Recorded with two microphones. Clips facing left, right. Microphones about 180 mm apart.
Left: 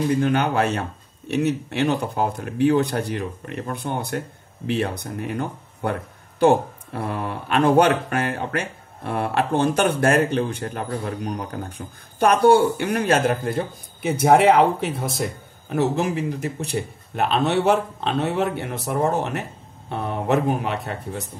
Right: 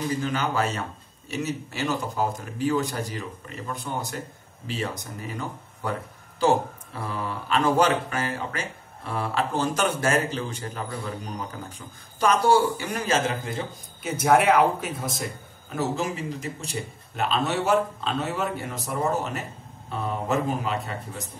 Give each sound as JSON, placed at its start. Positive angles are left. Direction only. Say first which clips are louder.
{"t": 0.1, "sound": "speech", "louder": "left 6 dB", "side_deg": 60}